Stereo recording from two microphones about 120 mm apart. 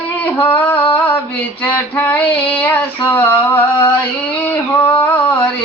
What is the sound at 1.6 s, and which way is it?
Female singing, 15° left (ahead or behind).